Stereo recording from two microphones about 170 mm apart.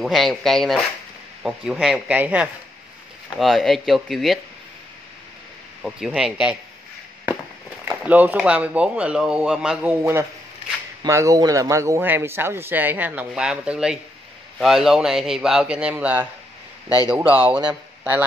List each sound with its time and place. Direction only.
0.0 s speech: centre (ahead or behind)
5.8 s speech: centre (ahead or behind)
7.9 s speech: 10° right (ahead or behind)